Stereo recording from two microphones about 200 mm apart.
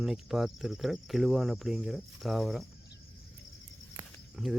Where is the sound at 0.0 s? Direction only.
Centre (ahead or behind).